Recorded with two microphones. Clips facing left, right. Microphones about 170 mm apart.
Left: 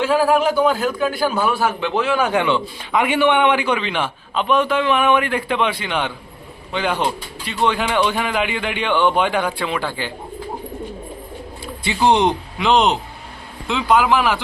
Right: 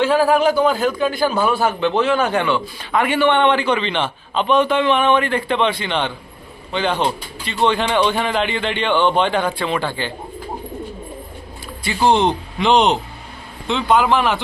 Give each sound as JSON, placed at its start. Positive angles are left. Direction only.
{"t": 0.0, "sound": "a man's voice", "side_deg": 0}
{"t": 12.0, "sound": "speech", "side_deg": 20}
{"t": 12.5, "sound": "a man's voice", "side_deg": 0}